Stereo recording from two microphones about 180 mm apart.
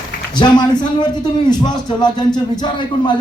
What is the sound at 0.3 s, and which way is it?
A man's voice, 25° left (ahead or behind).